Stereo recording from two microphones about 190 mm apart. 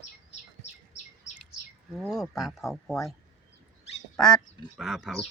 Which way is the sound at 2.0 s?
Centre (ahead or behind).